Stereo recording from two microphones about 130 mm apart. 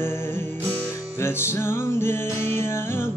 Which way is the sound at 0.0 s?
20° left (ahead or behind).